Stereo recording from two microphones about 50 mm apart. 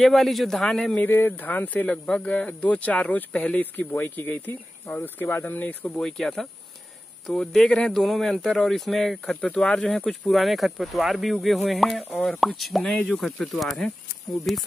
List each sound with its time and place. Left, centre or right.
0.0 s speech: centre
0.9 s speech: left
3.9 s speech: left
5.9 s speech: centre
7.9 s speech: centre
10.3 s speech: centre